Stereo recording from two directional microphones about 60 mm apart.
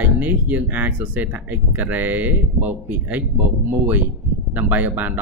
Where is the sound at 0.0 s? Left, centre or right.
Right.